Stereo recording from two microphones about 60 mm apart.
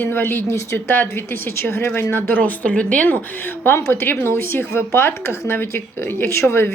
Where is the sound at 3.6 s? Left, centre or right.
Left.